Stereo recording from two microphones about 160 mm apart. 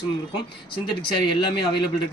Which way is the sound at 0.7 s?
30° left (ahead or behind).